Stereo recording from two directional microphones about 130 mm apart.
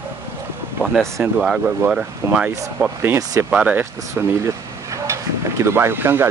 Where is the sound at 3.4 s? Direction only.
10° right (ahead or behind).